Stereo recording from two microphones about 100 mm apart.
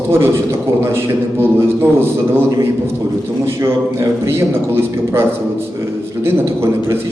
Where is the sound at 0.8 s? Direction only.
25° right (ahead or behind).